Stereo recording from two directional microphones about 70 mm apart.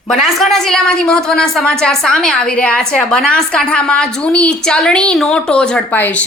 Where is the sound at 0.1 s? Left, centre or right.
Centre.